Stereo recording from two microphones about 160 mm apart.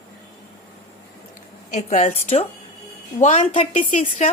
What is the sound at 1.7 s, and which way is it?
Speech, 50° left (ahead or behind).